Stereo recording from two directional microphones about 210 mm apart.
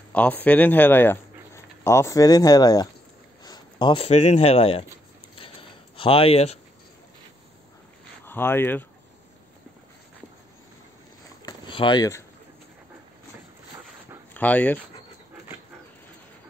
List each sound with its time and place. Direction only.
0.1 s speech: 5° left (ahead or behind); by 4.8 s 25° left (ahead or behind)
5.9 s speech: 25° left (ahead or behind)
8.3 s speech: 10° left (ahead or behind)
11.4 s a sound: 20° left (ahead or behind)
14.3 s speech: 5° left (ahead or behind)